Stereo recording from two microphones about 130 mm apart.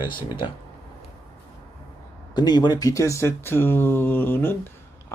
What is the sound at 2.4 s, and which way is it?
Speech, 35° left (ahead or behind).